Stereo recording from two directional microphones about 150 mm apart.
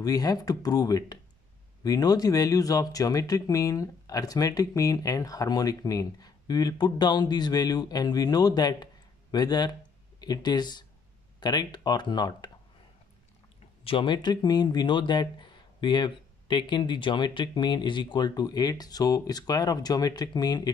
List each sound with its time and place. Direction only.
0.0 s speech: 25° left (ahead or behind)
13.8 s speech: 35° left (ahead or behind)